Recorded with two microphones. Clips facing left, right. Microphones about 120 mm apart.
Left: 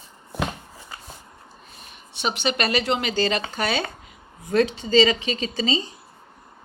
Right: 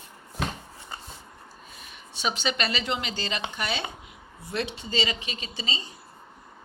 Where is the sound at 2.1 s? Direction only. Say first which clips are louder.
Left 4 dB; 60° left (ahead or behind); by 3.8 s 90° left.